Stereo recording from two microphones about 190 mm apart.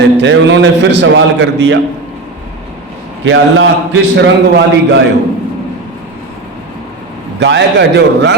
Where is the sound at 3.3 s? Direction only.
80° right.